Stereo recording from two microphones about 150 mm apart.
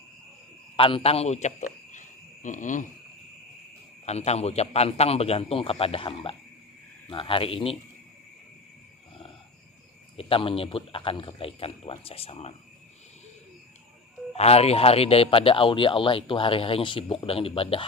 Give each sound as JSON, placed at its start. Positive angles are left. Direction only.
{"t": 0.8, "sound": "a man's voice", "side_deg": 35}
{"t": 4.0, "sound": "a man's voice", "side_deg": 45}
{"t": 10.2, "sound": "speech", "side_deg": 35}
{"t": 14.3, "sound": "speech", "side_deg": 45}